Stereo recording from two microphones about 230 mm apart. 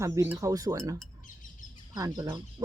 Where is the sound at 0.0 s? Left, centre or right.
Centre.